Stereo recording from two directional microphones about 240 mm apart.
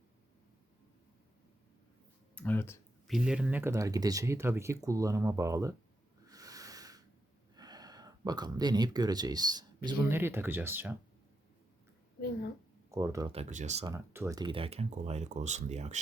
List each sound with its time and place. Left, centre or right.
2.3 s a sound: centre
3.2 s speech: centre
6.2 s snort: centre
7.5 s speech: centre
12.9 s speech: centre
13.3 s speech: right
13.8 s speech: centre; by 16.0 s right